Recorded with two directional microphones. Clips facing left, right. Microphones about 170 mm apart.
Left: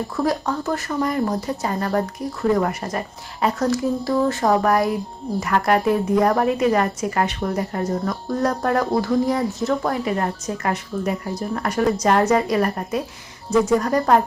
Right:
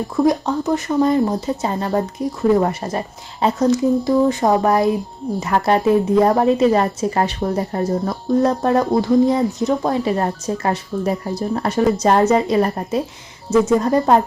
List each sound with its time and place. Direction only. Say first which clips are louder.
0.2 s a woman's voice: right 6 dB; 20° right (ahead or behind)